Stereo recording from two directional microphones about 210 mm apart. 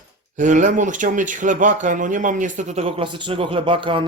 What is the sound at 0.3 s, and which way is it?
Speech, 35° right (ahead or behind).